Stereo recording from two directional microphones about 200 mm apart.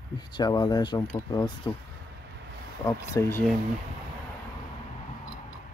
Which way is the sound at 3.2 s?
15° left (ahead or behind).